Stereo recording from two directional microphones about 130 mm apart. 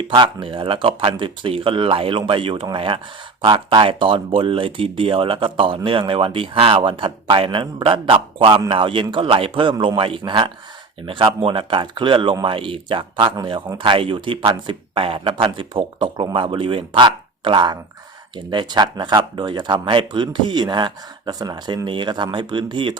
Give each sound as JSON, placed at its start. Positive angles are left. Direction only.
{"t": 0.1, "sound": "speech", "side_deg": -40}